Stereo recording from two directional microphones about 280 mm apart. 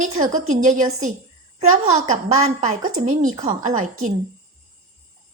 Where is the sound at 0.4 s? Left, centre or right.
Right.